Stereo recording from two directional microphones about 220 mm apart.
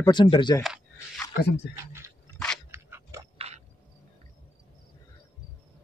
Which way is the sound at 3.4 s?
30° right (ahead or behind).